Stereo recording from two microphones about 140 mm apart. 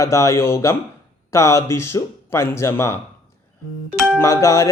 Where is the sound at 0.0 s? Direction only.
20° left (ahead or behind).